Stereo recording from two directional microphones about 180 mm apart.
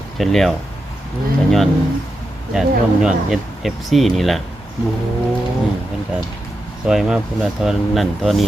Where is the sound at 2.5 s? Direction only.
5° right (ahead or behind).